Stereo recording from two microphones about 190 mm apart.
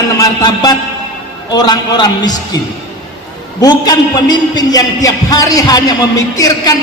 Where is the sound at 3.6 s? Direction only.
20° left (ahead or behind).